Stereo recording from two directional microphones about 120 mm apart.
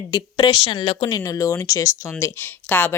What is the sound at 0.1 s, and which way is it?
A woman's voice, 40° left (ahead or behind).